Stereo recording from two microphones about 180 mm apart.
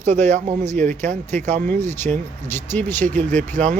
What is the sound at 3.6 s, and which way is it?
Speech, 45° right (ahead or behind).